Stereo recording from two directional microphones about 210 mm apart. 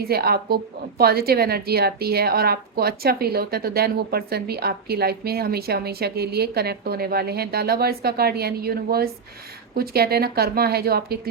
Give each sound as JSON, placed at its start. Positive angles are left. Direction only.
{"t": 0.0, "sound": "a woman's voice", "side_deg": -45}